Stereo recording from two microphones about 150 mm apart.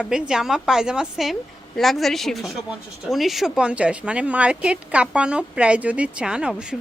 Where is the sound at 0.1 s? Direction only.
5° right (ahead or behind).